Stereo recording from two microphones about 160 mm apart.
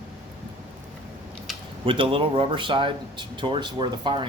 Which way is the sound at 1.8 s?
35° right (ahead or behind).